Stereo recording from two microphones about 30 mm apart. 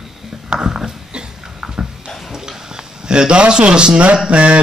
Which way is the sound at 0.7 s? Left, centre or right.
Right.